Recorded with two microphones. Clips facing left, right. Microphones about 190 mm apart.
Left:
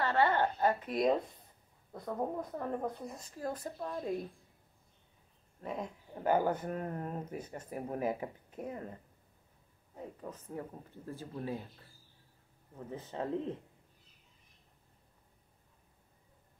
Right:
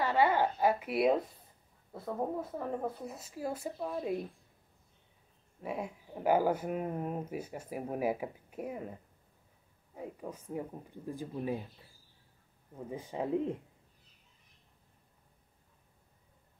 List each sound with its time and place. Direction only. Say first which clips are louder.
0.0 s a woman's voice: right 1 dB; 10° right (ahead or behind)
5.6 s speech: right 2 dB; 10° right (ahead or behind)
9.9 s speech: right 3 dB; 10° right (ahead or behind)
12.7 s speech: right 2 dB; 10° right (ahead or behind)